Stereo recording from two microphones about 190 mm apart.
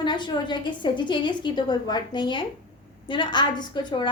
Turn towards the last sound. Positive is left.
turn(degrees=25)  # may be behind; listen again after turning